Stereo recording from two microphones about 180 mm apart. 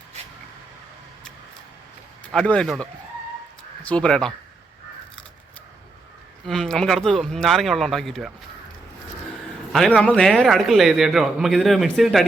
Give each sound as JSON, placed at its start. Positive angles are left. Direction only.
{"t": 2.3, "sound": "a man's voice", "side_deg": 5}
{"t": 3.8, "sound": "a man's voice", "side_deg": 5}
{"t": 6.4, "sound": "a man's voice", "side_deg": 0}
{"t": 9.7, "sound": "a man's voice", "side_deg": 0}